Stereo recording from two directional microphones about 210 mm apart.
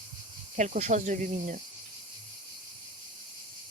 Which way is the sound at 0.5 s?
35° right (ahead or behind).